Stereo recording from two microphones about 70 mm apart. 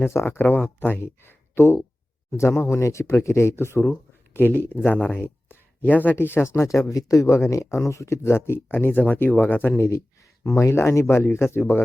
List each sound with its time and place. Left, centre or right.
0.0 s speech: left
6.5 s speech: left
6.8 s speech: left
9.7 s speech: left